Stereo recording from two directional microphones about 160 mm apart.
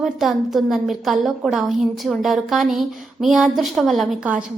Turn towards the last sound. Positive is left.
turn(degrees=-5)  # may be behind; listen again after turning